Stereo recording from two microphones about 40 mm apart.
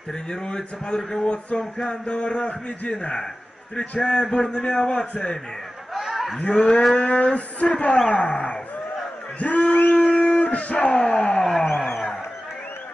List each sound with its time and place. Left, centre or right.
0.3 s speech: centre
5.9 s snicker: centre
6.4 s speech: left
9.4 s a sound: left